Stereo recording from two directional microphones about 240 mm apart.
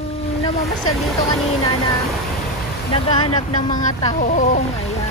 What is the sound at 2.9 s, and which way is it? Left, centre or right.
Speech, left.